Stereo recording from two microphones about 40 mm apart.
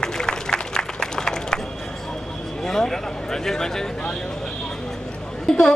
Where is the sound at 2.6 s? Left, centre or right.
Centre.